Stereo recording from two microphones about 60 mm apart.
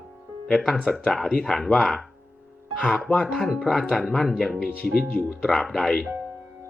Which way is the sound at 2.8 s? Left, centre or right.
Centre.